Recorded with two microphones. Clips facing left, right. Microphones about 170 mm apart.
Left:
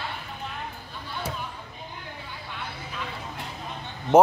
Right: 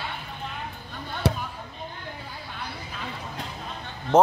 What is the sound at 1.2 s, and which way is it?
Basketball bounce, 70° right (ahead or behind).